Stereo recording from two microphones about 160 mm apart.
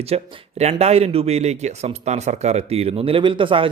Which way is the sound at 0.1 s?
40° right (ahead or behind).